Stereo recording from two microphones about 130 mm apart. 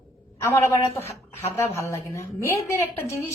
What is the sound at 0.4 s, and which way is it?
A woman's voice, 20° left (ahead or behind).